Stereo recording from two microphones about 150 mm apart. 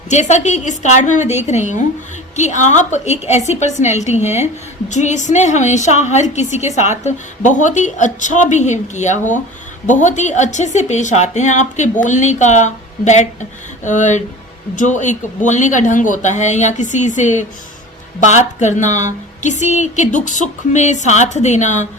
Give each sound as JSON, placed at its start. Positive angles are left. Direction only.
{"t": 0.1, "sound": "a woman's voice", "side_deg": 50}